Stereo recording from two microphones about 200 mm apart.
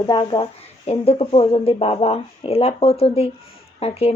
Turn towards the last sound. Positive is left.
turn(degrees=30)  # may be behind; listen again after turning